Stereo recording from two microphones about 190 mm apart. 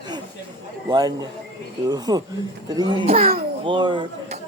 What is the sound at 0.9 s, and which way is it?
A child's voice, 20° right (ahead or behind).